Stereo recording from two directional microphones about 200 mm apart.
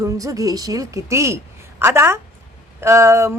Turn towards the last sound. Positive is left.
turn(degrees=-15)  # may be behind; listen again after turning